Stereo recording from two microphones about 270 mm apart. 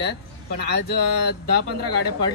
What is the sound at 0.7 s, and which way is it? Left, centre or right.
Speech, left.